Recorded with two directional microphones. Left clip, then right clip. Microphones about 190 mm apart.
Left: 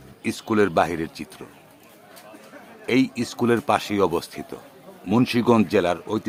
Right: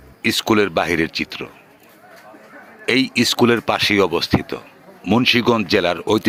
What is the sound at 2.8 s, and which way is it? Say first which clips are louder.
Speech: right 6 dB; 20° right (ahead or behind).